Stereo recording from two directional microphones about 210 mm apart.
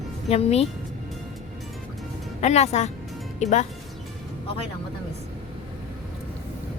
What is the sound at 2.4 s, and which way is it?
A woman's voice, 30° left (ahead or behind).